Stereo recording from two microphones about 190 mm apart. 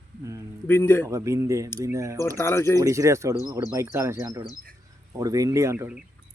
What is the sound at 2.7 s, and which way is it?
Speech, 15° right (ahead or behind).